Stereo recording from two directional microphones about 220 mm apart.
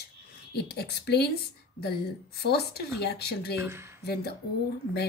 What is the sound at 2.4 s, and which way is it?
A woman's voice, 45° left (ahead or behind).